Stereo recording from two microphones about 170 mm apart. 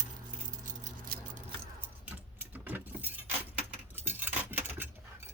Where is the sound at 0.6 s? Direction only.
50° right (ahead or behind).